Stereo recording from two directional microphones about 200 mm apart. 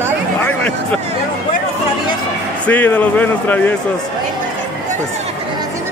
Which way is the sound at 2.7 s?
10° left (ahead or behind).